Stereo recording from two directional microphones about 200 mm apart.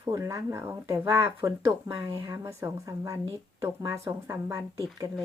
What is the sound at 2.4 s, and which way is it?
Speech, 15° right (ahead or behind).